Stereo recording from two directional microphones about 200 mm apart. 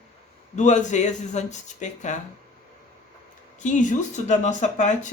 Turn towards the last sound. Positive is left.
turn(degrees=35)  # may be behind; listen again after turning